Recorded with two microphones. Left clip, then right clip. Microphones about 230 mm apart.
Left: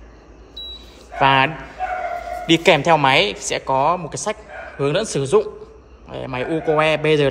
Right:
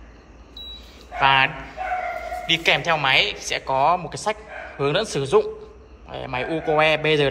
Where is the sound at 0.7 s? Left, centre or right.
Centre.